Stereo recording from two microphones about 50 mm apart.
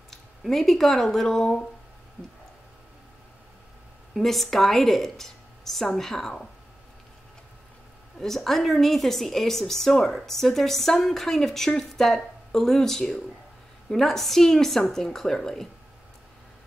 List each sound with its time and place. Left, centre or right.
0.4 s speech: centre
2.2 s speech: right
4.1 s a woman's voice: centre
8.2 s a woman's voice: centre